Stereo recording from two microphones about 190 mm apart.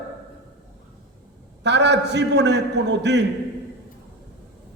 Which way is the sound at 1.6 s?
65° right (ahead or behind).